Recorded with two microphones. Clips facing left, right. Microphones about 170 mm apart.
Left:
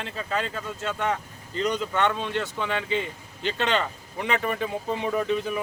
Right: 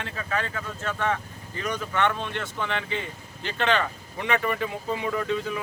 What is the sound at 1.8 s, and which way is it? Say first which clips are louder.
Speech: left 1 dB; 20° left (ahead or behind).